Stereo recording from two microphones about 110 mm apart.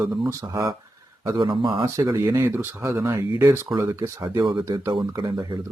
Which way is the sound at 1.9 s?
25° right (ahead or behind).